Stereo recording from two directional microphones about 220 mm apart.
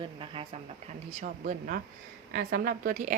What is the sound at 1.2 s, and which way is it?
A woman's voice, 40° right (ahead or behind).